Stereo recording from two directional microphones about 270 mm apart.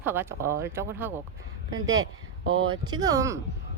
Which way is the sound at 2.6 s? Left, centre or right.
Centre.